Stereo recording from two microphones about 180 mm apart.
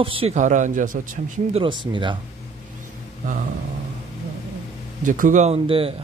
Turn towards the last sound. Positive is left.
turn(degrees=-30)  # may be behind; listen again after turning